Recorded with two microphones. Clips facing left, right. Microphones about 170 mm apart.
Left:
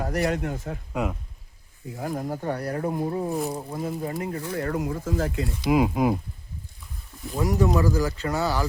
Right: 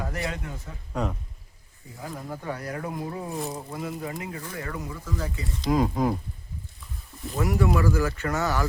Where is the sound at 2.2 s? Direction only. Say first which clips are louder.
Left 5 dB; 35° left (ahead or behind).